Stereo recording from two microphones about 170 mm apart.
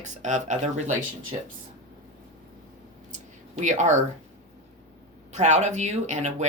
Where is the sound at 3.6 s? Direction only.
45° right (ahead or behind).